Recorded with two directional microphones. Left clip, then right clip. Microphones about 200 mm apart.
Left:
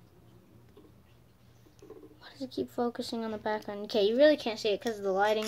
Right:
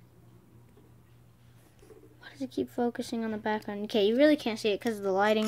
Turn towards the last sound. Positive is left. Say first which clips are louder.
# right 1 dB
turn(degrees=-35)  # may be behind; listen again after turning